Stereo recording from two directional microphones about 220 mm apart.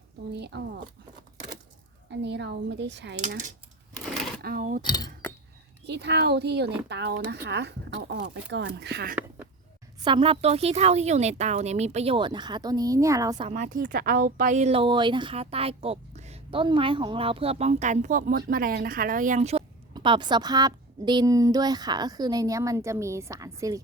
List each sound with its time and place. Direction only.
0.3 s speech: 50° right (ahead or behind)
2.0 s speech: 50° right (ahead or behind)
3.2 s speech: 35° right (ahead or behind)
4.8 s speech: 20° left (ahead or behind)
5.8 s speech: 50° right (ahead or behind)
10.0 s speech: 25° right (ahead or behind)
13.5 s speech: 35° right (ahead or behind); by 23.8 s 15° right (ahead or behind)